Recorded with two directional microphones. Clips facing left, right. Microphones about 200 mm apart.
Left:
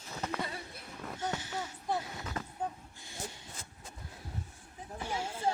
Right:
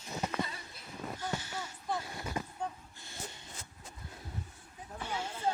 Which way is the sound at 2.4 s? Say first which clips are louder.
Right 2 dB; 10° right (ahead or behind).